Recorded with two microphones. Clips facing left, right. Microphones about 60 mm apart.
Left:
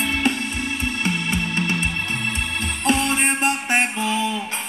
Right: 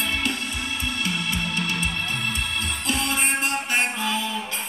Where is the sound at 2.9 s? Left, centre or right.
Left.